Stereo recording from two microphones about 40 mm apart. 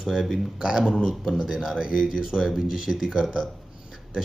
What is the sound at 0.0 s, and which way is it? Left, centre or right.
Speech, centre.